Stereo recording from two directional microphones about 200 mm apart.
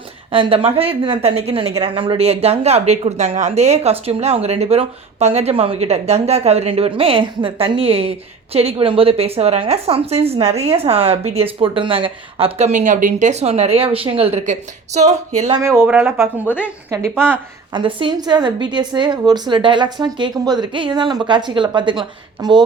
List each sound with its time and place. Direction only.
0.3 s a woman's voice: 25° right (ahead or behind)
15.5 s speech: 15° right (ahead or behind)
17.7 s a woman's voice: 25° right (ahead or behind)